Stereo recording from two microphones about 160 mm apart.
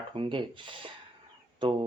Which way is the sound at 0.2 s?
30° right (ahead or behind).